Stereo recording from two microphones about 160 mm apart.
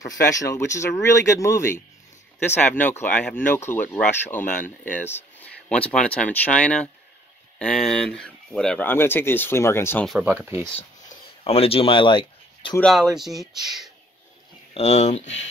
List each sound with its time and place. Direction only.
0.0 s speech: 20° left (ahead or behind)
10.2 s speech: 15° right (ahead or behind)
11.4 s speech: 35° left (ahead or behind)
12.8 s speech: centre (ahead or behind)
14.7 s speech: 45° left (ahead or behind)